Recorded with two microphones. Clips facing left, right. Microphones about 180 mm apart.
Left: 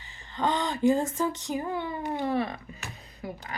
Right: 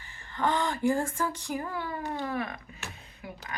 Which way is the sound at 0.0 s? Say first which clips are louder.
Left 1 dB; 20° left (ahead or behind).